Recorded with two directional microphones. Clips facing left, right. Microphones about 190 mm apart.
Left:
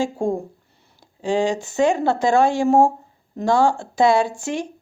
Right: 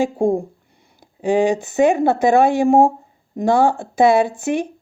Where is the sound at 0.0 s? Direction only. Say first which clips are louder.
Right 4 dB; 15° right (ahead or behind).